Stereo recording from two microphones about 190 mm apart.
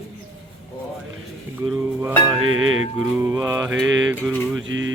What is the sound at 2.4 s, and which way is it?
Music, 90° right.